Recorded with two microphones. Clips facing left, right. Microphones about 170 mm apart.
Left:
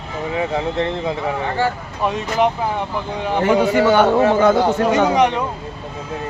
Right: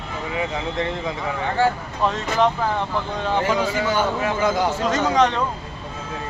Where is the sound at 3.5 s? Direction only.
65° left (ahead or behind).